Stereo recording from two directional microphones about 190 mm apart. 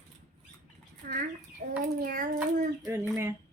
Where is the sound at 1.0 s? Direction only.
45° right (ahead or behind).